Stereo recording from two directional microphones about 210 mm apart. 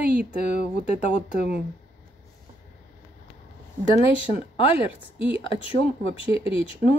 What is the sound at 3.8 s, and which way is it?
Speech, 25° left (ahead or behind).